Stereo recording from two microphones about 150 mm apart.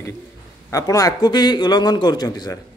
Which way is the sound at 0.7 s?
25° left (ahead or behind).